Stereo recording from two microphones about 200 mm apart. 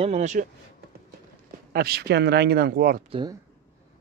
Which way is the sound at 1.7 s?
50° right (ahead or behind).